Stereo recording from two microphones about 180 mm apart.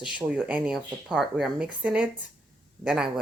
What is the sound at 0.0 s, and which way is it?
Speech, 5° right (ahead or behind).